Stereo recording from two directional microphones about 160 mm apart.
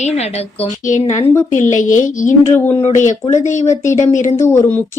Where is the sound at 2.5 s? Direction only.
15° left (ahead or behind).